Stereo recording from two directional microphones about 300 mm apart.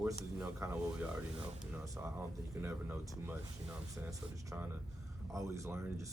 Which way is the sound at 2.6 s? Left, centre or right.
Centre.